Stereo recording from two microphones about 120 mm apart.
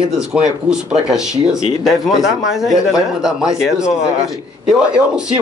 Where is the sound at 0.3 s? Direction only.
5° right (ahead or behind).